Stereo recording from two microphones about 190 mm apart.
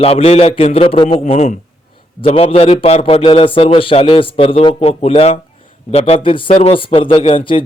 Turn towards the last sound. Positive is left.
turn(degrees=25)  # may be behind; listen again after turning